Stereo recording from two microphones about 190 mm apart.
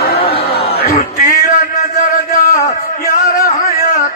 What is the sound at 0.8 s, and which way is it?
Speech, 55° left (ahead or behind).